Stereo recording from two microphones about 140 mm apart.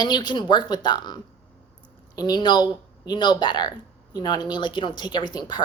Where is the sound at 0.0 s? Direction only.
30° left (ahead or behind).